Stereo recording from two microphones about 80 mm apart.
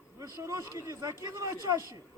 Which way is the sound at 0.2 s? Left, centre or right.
Right.